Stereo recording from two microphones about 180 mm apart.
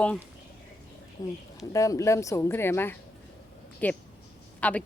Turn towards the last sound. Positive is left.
turn(degrees=10)  # may be behind; listen again after turning